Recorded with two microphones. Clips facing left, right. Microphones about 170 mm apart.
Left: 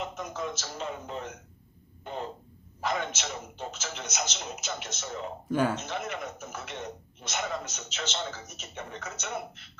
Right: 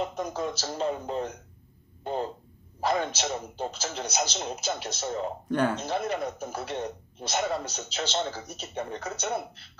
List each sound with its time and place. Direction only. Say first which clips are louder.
0.0 s a man's voice: right 5 dB; 35° right (ahead or behind)
5.5 s speech: even; 5° left (ahead or behind)
5.8 s a man's voice: right 6 dB; 35° right (ahead or behind)